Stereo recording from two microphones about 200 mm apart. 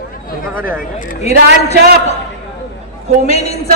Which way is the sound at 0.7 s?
45° left (ahead or behind).